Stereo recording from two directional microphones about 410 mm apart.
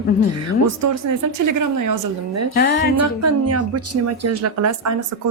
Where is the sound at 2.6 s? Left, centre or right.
Left.